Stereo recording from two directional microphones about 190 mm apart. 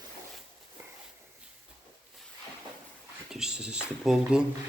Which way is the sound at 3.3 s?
5° right (ahead or behind).